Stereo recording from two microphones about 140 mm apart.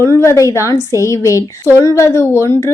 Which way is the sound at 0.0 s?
20° left (ahead or behind).